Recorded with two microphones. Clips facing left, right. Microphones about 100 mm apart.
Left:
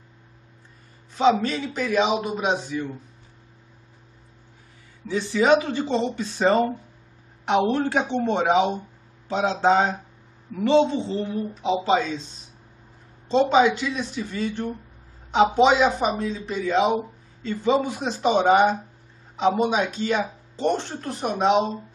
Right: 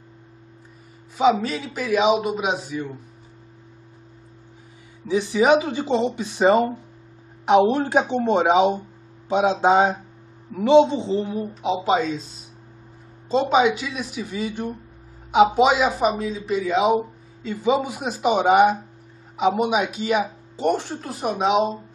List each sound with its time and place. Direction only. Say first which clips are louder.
1.4 s speech: left 1 dB; 5° right (ahead or behind)
5.0 s speech: right 3 dB; 15° right (ahead or behind)
11.7 s speech: even; 5° right (ahead or behind)
13.3 s speech: even; 5° right (ahead or behind)